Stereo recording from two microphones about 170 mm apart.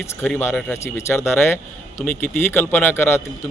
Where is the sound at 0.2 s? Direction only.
10° left (ahead or behind).